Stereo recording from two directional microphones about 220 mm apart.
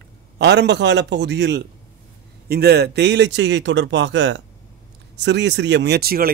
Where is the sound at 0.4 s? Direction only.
50° right (ahead or behind).